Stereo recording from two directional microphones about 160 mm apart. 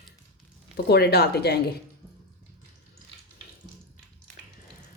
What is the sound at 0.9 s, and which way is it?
Speech, 90° left.